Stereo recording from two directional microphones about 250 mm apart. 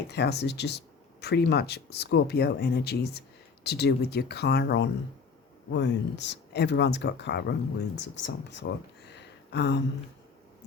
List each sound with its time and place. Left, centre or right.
0.1 s speech: left